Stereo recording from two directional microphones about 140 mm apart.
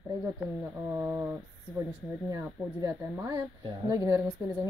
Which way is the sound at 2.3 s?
20° right (ahead or behind).